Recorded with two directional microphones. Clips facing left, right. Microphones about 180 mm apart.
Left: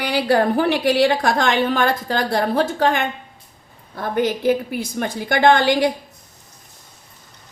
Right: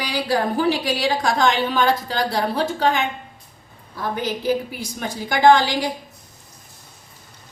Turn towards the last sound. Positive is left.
turn(degrees=60)  # may be behind; listen again after turning